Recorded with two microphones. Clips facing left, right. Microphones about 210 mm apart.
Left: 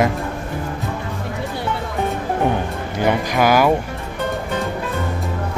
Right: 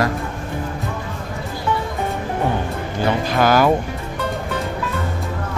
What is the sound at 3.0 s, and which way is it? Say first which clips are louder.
Speech: left 1 dB; 15° left (ahead or behind).